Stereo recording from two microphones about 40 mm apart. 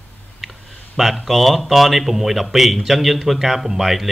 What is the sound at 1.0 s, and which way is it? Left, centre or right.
Speech, centre.